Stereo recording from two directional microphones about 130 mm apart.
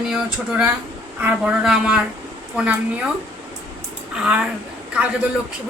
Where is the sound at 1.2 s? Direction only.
10° right (ahead or behind).